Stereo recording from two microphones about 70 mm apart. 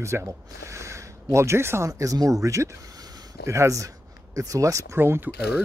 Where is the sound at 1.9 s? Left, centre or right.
Right.